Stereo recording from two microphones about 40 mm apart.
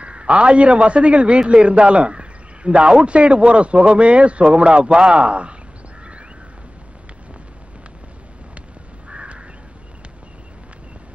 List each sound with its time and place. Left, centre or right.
0.0 s a man's voice: right
9.1 s crow: right